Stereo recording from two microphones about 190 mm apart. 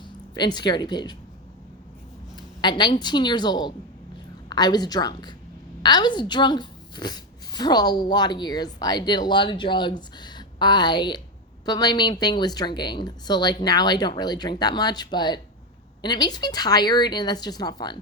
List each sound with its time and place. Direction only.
0.0 s speech: 25° left (ahead or behind)
2.3 s a woman's voice: 25° left (ahead or behind)